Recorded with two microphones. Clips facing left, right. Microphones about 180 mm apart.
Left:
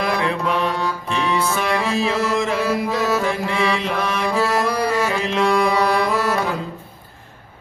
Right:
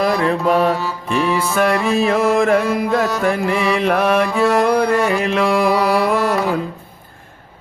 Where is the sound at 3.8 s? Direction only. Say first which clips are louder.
Right 8 dB; 55° right (ahead or behind).